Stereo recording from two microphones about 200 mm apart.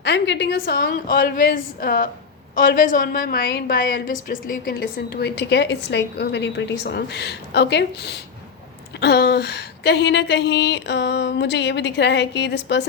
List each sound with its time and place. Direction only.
0.0 s a woman's voice: 60° left (ahead or behind)